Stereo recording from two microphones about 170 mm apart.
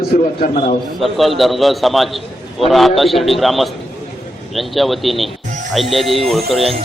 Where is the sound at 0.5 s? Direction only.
40° left (ahead or behind).